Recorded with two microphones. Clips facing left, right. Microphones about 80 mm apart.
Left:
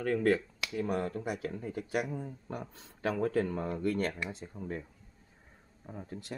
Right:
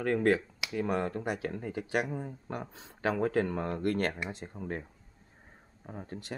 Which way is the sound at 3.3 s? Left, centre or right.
Right.